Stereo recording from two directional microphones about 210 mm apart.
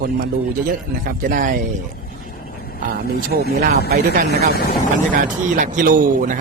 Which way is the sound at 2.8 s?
45° right (ahead or behind).